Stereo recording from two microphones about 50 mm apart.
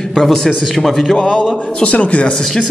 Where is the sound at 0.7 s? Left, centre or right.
Centre.